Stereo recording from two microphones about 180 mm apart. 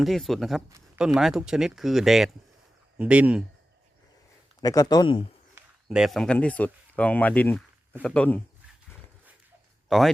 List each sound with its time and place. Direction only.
0.0 s speech: centre (ahead or behind)
4.6 s speech: 20° left (ahead or behind)
5.5 s a man's voice: 5° right (ahead or behind)
9.9 s speech: centre (ahead or behind)